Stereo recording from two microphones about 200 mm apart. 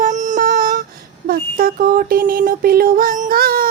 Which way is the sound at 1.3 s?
45° right (ahead or behind).